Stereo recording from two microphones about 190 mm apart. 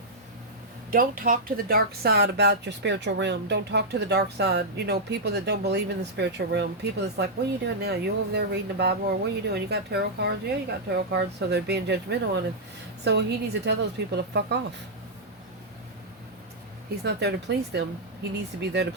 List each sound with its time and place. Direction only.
0.9 s speech: 50° right (ahead or behind)
17.0 s speech: 60° right (ahead or behind)